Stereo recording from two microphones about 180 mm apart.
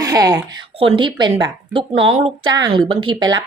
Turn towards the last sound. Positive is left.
turn(degrees=-25)  # may be behind; listen again after turning